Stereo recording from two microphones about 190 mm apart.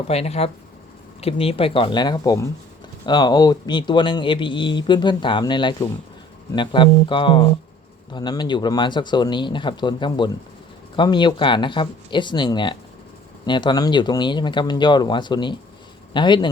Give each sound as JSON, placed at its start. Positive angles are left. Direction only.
{"t": 0.1, "sound": "speech", "side_deg": 35}